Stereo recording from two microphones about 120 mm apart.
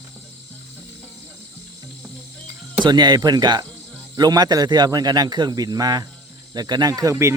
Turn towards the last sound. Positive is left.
turn(degrees=-20)  # may be behind; listen again after turning